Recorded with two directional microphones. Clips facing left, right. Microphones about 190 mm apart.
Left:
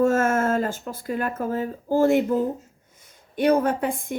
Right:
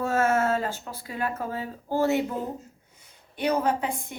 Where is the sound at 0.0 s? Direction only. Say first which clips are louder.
Left 4 dB; 50° left (ahead or behind).